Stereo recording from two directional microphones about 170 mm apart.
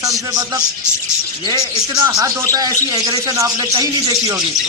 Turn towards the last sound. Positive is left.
turn(degrees=-25)  # may be behind; listen again after turning